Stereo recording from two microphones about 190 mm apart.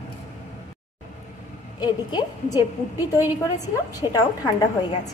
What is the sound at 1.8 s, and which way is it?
A woman's voice, 20° left (ahead or behind).